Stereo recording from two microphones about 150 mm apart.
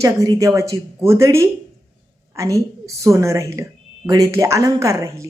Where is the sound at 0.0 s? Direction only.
20° right (ahead or behind).